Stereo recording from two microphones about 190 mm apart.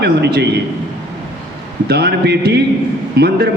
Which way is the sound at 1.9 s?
60° right (ahead or behind).